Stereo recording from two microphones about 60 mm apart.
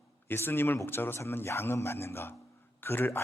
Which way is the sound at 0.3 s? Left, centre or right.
Left.